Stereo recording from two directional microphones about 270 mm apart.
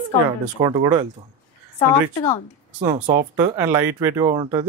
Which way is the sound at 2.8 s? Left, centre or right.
Centre.